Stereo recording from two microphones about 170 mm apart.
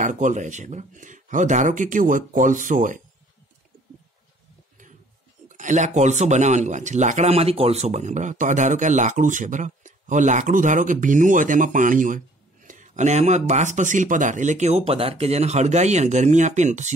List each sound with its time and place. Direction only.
0.0 s speech: 50° right (ahead or behind)
5.5 s speech: 45° right (ahead or behind)